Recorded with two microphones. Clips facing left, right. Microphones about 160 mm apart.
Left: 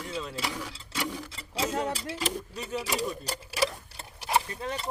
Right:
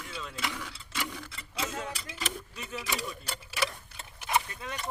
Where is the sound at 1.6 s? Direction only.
35° left (ahead or behind).